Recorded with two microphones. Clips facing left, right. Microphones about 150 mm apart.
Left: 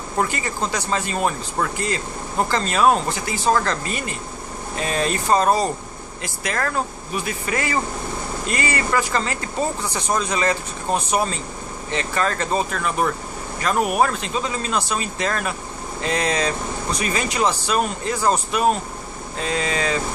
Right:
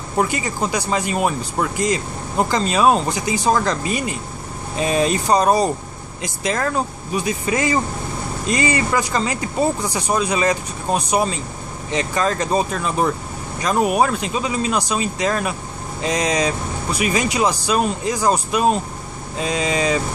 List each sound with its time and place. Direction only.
0.2 s a man's voice: 15° right (ahead or behind)